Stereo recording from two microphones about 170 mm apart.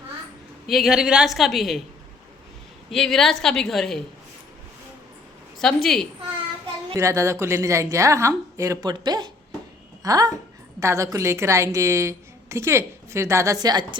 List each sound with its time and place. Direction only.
0.7 s a man's voice: centre (ahead or behind)
2.9 s a man's voice: centre (ahead or behind)
5.5 s a man's voice: centre (ahead or behind)
6.9 s a woman's voice: 15° right (ahead or behind)